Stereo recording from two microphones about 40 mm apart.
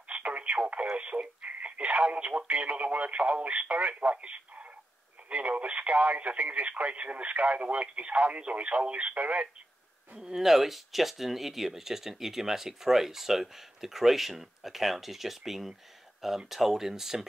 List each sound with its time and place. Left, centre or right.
0.1 s radio: right
0.8 s speech: right
10.1 s speech: centre